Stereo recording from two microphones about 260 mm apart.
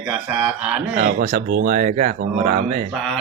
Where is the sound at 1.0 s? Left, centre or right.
Right.